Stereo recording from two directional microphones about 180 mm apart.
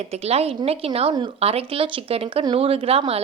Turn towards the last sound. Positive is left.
turn(degrees=-35)  # may be behind; listen again after turning